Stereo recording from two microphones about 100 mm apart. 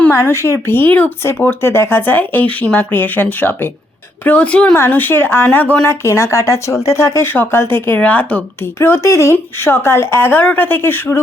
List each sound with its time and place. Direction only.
0.2 s speech: 30° left (ahead or behind)
5.9 s speech: 30° left (ahead or behind)